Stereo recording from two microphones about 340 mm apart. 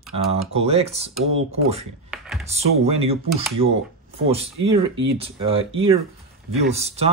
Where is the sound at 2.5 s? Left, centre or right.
Centre.